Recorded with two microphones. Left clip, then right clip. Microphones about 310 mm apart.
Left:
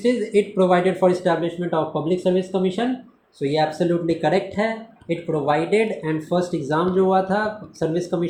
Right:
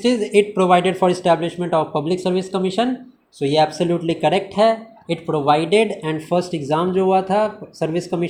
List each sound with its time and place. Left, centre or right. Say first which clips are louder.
0.0 s speech: right 3 dB; right